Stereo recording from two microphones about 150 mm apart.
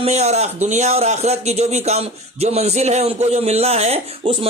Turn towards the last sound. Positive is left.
turn(degrees=-40)  # may be behind; listen again after turning